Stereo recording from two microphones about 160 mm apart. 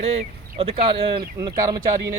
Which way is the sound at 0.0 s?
40° right (ahead or behind).